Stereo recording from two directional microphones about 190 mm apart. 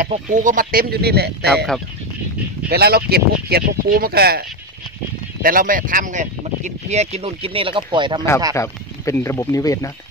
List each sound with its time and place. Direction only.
0.0 s speech: 45° right (ahead or behind)
2.7 s speech: 55° right (ahead or behind); by 8.3 s 25° right (ahead or behind)
8.5 s speech: 15° left (ahead or behind)